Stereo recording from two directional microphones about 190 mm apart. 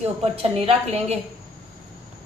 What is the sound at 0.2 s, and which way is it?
Speech, 30° right (ahead or behind).